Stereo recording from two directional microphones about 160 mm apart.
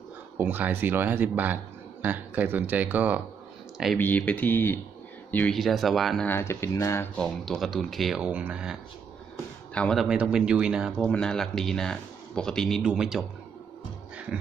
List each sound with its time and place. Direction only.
0.4 s speech: 10° right (ahead or behind)
4.0 s speech: 10° left (ahead or behind)
6.2 s speech: 15° left (ahead or behind)
7.2 s speech: centre (ahead or behind)
9.8 s speech: 5° left (ahead or behind)